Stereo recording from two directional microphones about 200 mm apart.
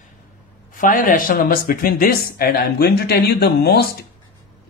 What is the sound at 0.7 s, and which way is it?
A man's voice, 40° left (ahead or behind).